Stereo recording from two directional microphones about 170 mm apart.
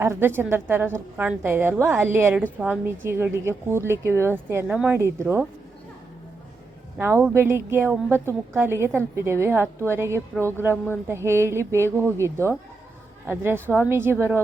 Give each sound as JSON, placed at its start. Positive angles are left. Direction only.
{"t": 0.0, "sound": "a woman's voice", "side_deg": -15}
{"t": 7.0, "sound": "a woman's voice", "side_deg": -15}